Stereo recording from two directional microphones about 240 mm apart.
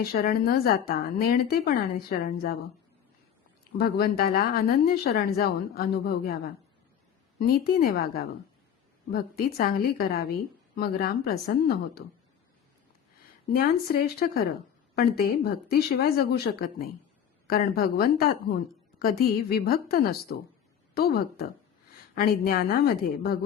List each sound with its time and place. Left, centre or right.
0.0 s speech: left
3.8 s speech: left
13.5 s speech: left